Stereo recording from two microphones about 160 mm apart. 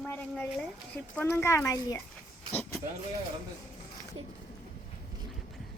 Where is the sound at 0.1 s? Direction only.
10° left (ahead or behind).